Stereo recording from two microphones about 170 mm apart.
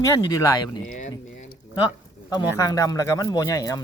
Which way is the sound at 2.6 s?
20° left (ahead or behind).